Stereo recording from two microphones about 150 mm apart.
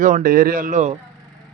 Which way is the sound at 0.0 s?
65° right (ahead or behind).